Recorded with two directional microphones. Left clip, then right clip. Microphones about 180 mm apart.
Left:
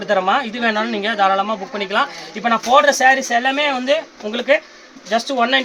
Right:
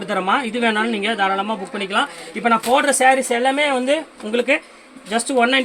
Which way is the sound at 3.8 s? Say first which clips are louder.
Left 2 dB; 25° left (ahead or behind).